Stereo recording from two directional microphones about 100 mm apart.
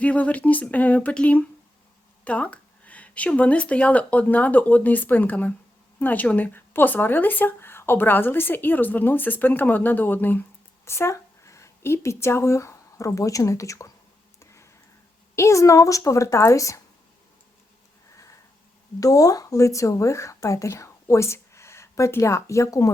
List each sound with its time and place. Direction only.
0.0 s speech: 15° left (ahead or behind); by 13.9 s 30° left (ahead or behind)
14.3 s a sound: 30° left (ahead or behind)
15.4 s a woman's voice: 30° left (ahead or behind)
18.9 s speech: 35° left (ahead or behind)